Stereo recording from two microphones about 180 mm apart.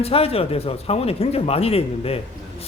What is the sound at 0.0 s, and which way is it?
A man's voice, 35° left (ahead or behind).